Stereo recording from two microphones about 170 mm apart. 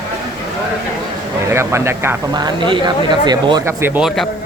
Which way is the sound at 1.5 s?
15° right (ahead or behind).